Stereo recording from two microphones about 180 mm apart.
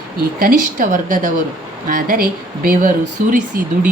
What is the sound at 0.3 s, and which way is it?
Speech, 50° right (ahead or behind).